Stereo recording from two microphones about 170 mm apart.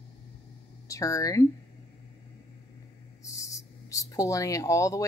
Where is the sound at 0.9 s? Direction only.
20° left (ahead or behind).